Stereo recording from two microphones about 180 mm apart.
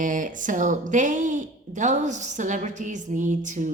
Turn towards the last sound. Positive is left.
turn(degrees=-45)  # may be behind; listen again after turning